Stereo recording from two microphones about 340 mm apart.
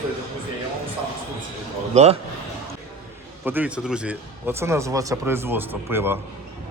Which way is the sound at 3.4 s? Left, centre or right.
Centre.